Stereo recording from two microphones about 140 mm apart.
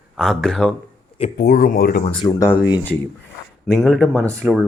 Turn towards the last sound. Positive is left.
turn(degrees=-20)  # may be behind; listen again after turning